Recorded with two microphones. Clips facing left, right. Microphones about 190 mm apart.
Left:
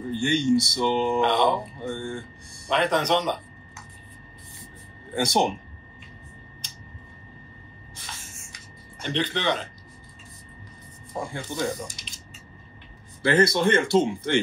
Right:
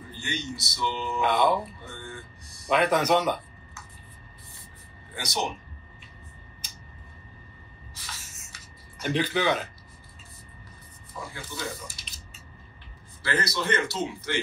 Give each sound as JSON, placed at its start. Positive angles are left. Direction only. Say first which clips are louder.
{"t": 0.1, "sound": "speech", "louder": "left 14 dB", "side_deg": 50}
{"t": 1.2, "sound": "speech", "louder": "right 3 dB", "side_deg": -5}
{"t": 1.8, "sound": "speech", "louder": "left 10 dB", "side_deg": 50}
{"t": 2.7, "sound": "speech", "louder": "even", "side_deg": -5}
{"t": 5.1, "sound": "speech", "louder": "left 8 dB", "side_deg": 55}
{"t": 7.9, "sound": "spray", "louder": "left 2 dB", "side_deg": 55}
{"t": 9.0, "sound": "speech", "louder": "right 1 dB", "side_deg": -5}
{"t": 11.1, "sound": "speech", "louder": "left 8 dB", "side_deg": 50}
{"t": 13.4, "sound": "speech", "louder": "left 7 dB", "side_deg": 50}